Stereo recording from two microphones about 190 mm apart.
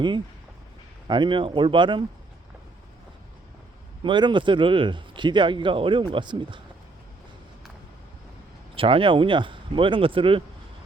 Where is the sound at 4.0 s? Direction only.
25° right (ahead or behind).